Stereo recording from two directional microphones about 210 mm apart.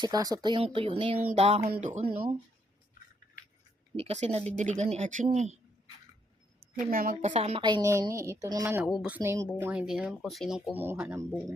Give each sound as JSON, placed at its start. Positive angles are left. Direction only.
{"t": 0.0, "sound": "a woman's voice", "side_deg": -20}
{"t": 3.9, "sound": "speech", "side_deg": -30}
{"t": 6.7, "sound": "a woman's voice", "side_deg": -40}